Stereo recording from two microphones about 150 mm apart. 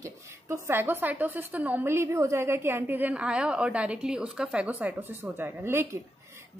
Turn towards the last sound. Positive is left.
turn(degrees=-15)  # may be behind; listen again after turning